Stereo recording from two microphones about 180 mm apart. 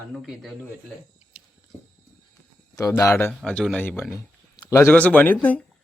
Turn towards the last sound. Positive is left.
turn(degrees=10)  # may be behind; listen again after turning